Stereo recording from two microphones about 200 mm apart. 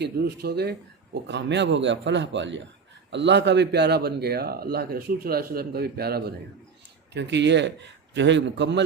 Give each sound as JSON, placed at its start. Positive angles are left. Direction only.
{"t": 0.0, "sound": "speech", "side_deg": -55}